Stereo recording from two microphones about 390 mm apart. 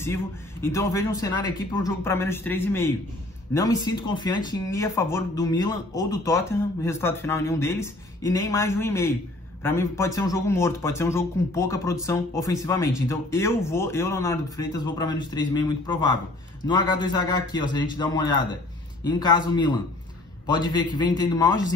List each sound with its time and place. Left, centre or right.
0.0 s a man's voice: centre